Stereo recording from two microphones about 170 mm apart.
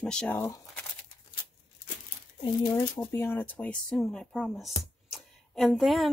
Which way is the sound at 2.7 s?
10° left (ahead or behind).